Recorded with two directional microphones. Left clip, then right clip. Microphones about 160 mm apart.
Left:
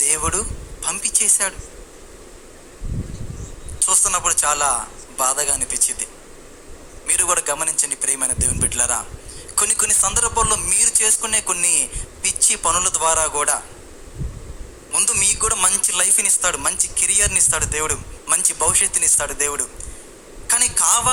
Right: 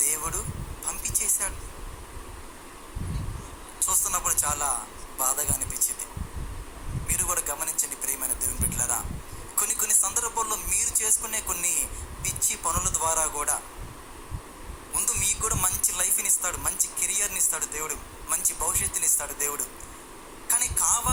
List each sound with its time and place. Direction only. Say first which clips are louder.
0.0 s a man's voice: left 9 dB; 45° left (ahead or behind)
3.8 s speech: left 8 dB; 45° left (ahead or behind)
7.1 s speech: left 10 dB; 45° left (ahead or behind)
14.9 s speech: left 8 dB; 45° left (ahead or behind)